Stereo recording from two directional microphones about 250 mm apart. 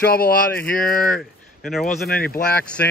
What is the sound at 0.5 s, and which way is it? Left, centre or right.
Speech, centre.